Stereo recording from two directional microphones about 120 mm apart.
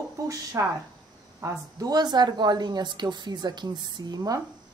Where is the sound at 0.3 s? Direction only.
30° right (ahead or behind).